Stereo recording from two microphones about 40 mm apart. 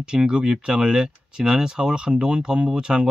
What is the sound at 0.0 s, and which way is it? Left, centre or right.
Speech, right.